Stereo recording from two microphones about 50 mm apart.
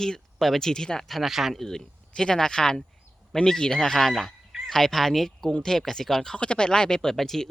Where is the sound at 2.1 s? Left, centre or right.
Centre.